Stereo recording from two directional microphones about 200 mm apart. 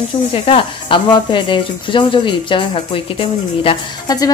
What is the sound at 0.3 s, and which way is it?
Speech, 25° left (ahead or behind).